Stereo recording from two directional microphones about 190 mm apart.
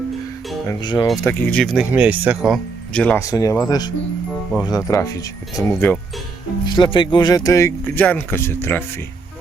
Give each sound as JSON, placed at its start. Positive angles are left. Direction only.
{"t": 0.7, "sound": "speech", "side_deg": 20}
{"t": 1.2, "sound": "speech", "side_deg": 5}
{"t": 3.2, "sound": "speech", "side_deg": 15}